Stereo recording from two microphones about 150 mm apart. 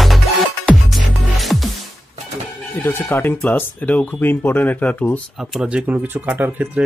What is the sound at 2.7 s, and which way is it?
Speech, 15° left (ahead or behind).